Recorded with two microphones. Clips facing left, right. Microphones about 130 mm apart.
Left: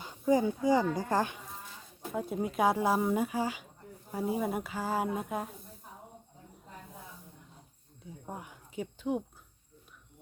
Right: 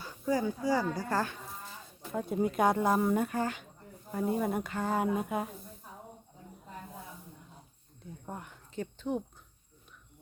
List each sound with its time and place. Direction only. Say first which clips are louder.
0.0 s speech: left 4 dB; 20° left (ahead or behind)
2.1 s speech: right 2 dB; centre (ahead or behind)
8.0 s speech: even; 10° left (ahead or behind)